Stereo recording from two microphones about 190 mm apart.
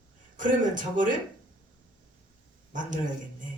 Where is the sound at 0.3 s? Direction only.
40° right (ahead or behind).